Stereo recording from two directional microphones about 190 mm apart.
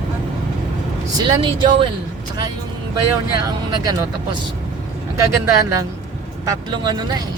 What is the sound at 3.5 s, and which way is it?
Speech, 20° right (ahead or behind).